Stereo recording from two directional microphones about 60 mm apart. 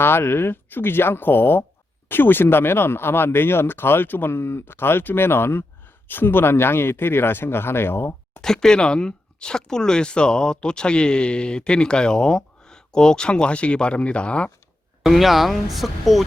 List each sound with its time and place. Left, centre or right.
0.0 s speech: left
8.4 s speech: centre
15.0 s speech: centre